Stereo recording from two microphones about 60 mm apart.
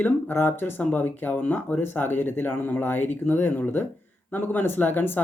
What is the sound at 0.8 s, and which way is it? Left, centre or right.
Speech, left.